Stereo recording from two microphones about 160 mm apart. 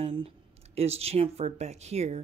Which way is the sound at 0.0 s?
35° right (ahead or behind).